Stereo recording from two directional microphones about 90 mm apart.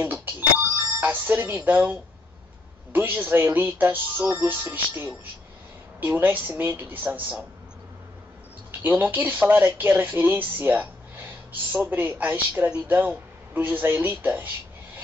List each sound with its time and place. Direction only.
0.0 s doorbell: 20° right (ahead or behind)
2.9 s speech: 20° right (ahead or behind)
8.8 s speech: 20° right (ahead or behind)